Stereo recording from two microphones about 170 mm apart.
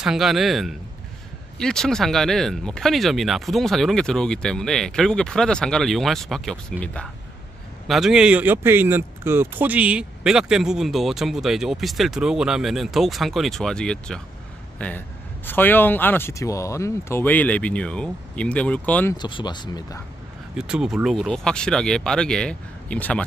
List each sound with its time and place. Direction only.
0.0 s a man's voice: centre (ahead or behind)
19.1 s speech: 25° left (ahead or behind)
20.5 s speech: 5° right (ahead or behind)